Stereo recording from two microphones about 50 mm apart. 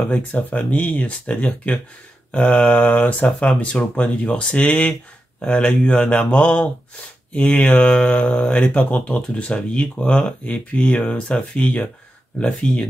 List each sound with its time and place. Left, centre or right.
0.1 s speech: left